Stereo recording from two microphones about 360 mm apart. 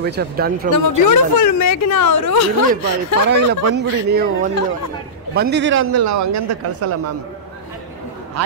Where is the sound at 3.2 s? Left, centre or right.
Right.